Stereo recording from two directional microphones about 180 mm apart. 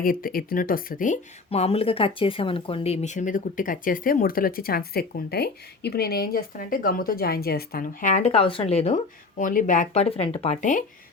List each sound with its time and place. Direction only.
0.0 s speech: 50° left (ahead or behind); by 9.0 s 35° left (ahead or behind)
9.4 s speech: 50° left (ahead or behind)